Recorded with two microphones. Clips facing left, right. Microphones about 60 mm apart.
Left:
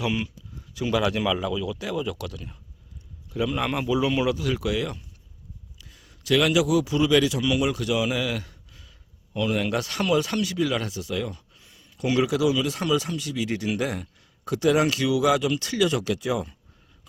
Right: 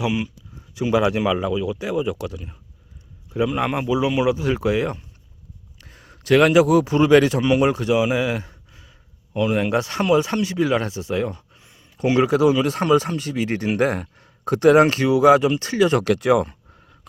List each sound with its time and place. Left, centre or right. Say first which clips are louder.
0.0 s speech: right 4 dB; centre
0.7 s speech: right 5 dB; right
5.7 s a man's voice: right 5 dB; right
16.0 s speech: right 9 dB; right